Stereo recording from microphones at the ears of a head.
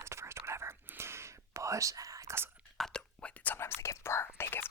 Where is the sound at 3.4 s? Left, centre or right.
Left.